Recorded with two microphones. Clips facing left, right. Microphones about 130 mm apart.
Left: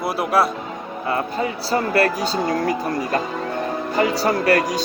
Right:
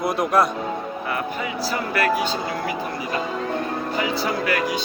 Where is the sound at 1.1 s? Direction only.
30° left (ahead or behind).